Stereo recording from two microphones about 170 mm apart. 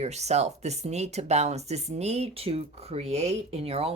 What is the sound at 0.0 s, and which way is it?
Speech, 40° right (ahead or behind).